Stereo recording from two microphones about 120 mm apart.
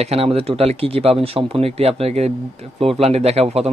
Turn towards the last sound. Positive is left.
turn(degrees=-60)  # may be behind; listen again after turning